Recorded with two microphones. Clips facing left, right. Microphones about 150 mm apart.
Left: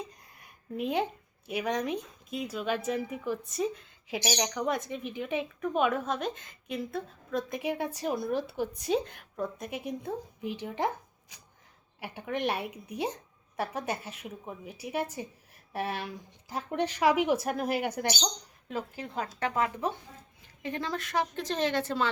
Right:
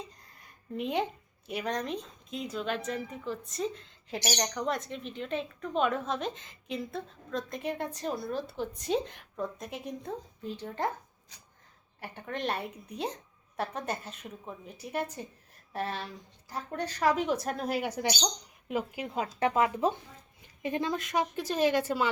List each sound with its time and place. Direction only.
0.8 s a woman's voice: centre (ahead or behind)
18.7 s a woman's voice: 15° right (ahead or behind)